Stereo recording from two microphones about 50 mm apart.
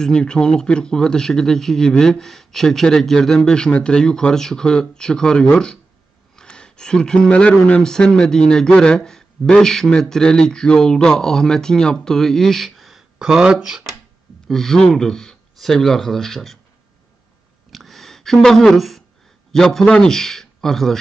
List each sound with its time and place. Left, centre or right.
0.0 s speech: centre
6.3 s a sound: centre
7.2 s speech: left
7.8 s speech: centre
13.2 s speech: centre
14.5 s speech: centre
17.6 s a sound: centre
19.5 s a man's voice: centre